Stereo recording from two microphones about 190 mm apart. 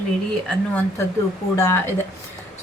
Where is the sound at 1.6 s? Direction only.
15° left (ahead or behind).